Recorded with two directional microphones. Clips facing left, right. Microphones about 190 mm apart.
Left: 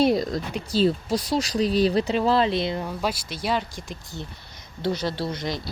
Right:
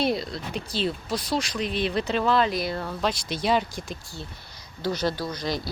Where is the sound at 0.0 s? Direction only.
45° left (ahead or behind); by 3.2 s 5° left (ahead or behind).